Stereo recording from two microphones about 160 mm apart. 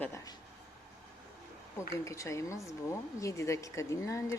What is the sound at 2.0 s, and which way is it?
A woman's voice, 20° left (ahead or behind).